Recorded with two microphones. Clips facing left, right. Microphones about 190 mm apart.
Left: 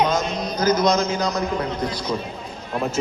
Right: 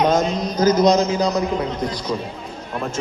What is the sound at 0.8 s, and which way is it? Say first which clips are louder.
A man's voice: right 4 dB; 35° right (ahead or behind).